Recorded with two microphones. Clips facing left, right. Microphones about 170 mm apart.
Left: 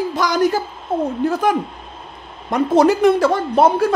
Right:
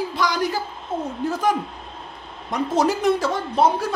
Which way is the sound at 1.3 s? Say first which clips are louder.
Left 4 dB; 60° left (ahead or behind).